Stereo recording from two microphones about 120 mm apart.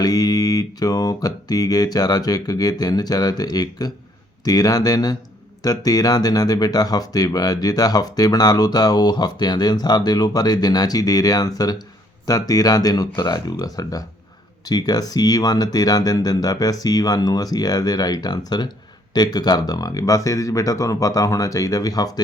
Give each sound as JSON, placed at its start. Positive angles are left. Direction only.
{"t": 0.0, "sound": "speech", "side_deg": 30}